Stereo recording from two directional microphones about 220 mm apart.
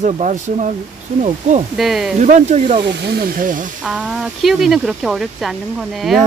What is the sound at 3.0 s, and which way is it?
Speech, 45° right (ahead or behind).